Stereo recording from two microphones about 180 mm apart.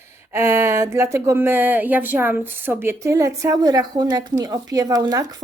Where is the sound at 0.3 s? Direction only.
15° right (ahead or behind).